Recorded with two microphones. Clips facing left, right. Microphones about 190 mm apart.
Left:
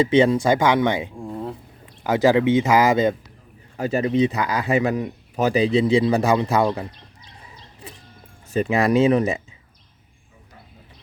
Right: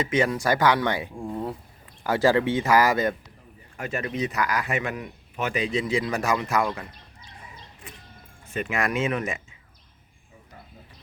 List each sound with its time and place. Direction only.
0.0 s speech: 30° left (ahead or behind)
1.2 s a sound: 5° right (ahead or behind)
2.0 s speech: 20° left (ahead or behind)
3.8 s speech: 35° left (ahead or behind)
8.5 s speech: 35° left (ahead or behind)